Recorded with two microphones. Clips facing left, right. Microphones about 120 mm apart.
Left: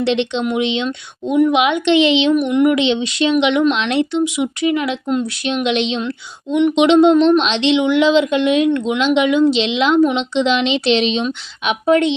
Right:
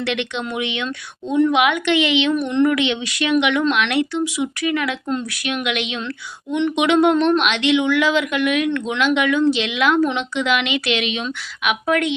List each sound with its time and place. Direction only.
0.0 s a woman's voice: 25° left (ahead or behind)